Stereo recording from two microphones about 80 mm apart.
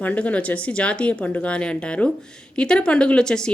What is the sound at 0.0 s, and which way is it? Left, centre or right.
Speech, centre.